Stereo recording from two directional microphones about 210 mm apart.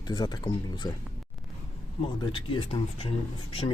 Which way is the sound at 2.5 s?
25° left (ahead or behind).